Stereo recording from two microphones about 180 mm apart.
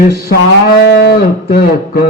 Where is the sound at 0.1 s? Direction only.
60° left (ahead or behind).